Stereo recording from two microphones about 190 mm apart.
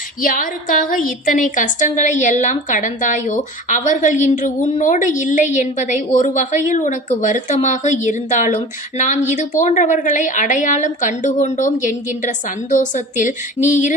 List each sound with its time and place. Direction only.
0.2 s a woman's voice: 45° left (ahead or behind)